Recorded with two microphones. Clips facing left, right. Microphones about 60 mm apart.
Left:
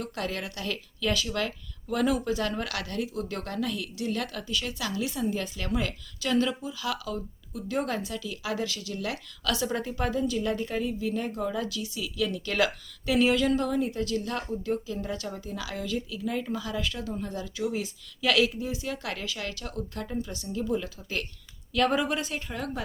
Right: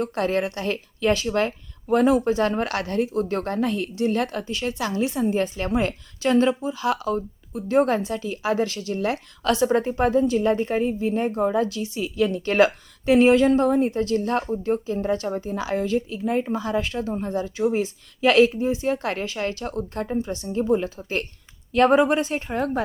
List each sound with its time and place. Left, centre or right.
0.0 s a woman's voice: right